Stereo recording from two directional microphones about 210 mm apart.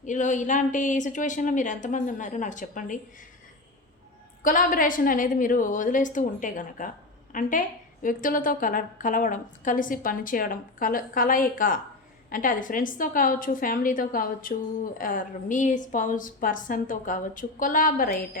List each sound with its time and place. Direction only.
0.0 s a woman's voice: 35° left (ahead or behind)
4.4 s a woman's voice: 40° left (ahead or behind)